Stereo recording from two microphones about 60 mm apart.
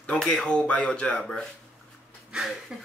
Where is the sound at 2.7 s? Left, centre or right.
Centre.